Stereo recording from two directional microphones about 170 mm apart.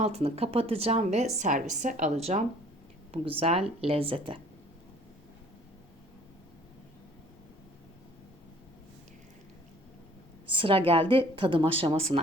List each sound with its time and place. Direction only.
0.0 s a woman's voice: 35° right (ahead or behind)
10.5 s a woman's voice: 30° right (ahead or behind)